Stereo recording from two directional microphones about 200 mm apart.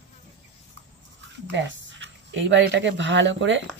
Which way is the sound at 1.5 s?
65° right (ahead or behind).